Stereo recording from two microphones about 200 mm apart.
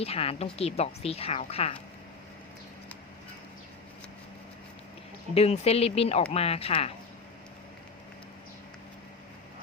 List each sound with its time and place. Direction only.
0.0 s a woman's voice: 30° left (ahead or behind)
5.3 s speech: 30° left (ahead or behind)